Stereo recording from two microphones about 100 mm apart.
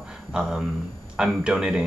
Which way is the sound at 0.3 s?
10° right (ahead or behind).